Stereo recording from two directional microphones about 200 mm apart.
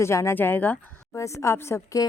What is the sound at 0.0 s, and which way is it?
A woman's voice, 15° left (ahead or behind).